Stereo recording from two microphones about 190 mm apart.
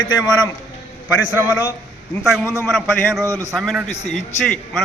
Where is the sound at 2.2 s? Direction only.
Centre (ahead or behind).